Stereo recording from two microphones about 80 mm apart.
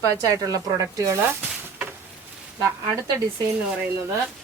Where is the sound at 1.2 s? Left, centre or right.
Right.